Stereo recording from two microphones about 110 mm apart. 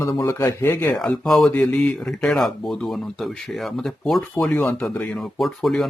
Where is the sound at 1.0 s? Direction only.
5° left (ahead or behind).